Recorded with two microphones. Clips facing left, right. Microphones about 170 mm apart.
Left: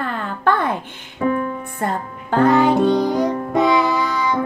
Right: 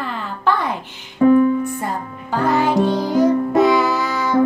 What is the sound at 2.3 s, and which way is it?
Music, 60° left (ahead or behind).